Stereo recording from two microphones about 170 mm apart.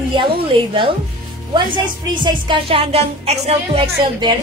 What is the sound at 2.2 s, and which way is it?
A woman's voice, 30° right (ahead or behind).